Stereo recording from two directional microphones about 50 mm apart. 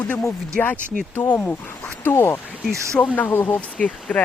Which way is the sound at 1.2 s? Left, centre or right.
Left.